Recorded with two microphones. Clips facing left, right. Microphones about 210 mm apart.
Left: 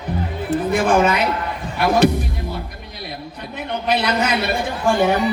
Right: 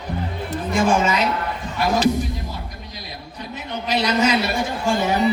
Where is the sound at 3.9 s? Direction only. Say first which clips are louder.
Right 1 dB; 60° left (ahead or behind).